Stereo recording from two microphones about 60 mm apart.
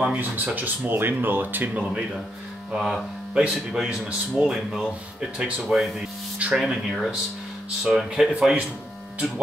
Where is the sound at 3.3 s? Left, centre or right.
Centre.